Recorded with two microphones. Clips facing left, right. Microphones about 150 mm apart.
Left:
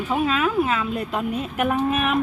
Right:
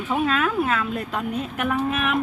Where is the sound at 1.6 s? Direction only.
25° left (ahead or behind).